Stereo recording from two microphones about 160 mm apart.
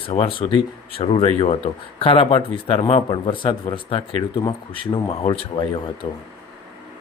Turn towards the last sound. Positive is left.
turn(degrees=35)  # may be behind; listen again after turning